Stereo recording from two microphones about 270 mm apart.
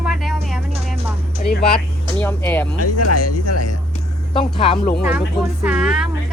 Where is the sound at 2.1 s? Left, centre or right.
Centre.